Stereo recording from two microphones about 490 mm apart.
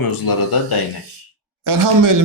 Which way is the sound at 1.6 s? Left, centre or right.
Right.